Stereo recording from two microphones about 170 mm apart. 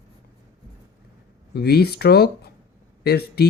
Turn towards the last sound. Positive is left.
turn(degrees=70)  # may be behind; listen again after turning